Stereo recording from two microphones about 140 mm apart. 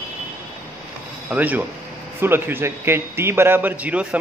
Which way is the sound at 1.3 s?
10° right (ahead or behind).